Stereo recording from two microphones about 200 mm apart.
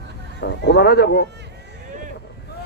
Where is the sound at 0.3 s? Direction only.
55° left (ahead or behind).